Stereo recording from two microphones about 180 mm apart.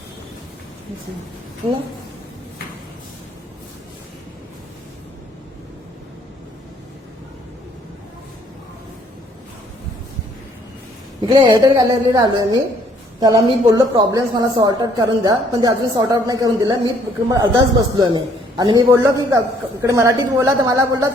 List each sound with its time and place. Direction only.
11.2 s a woman's voice: 25° right (ahead or behind)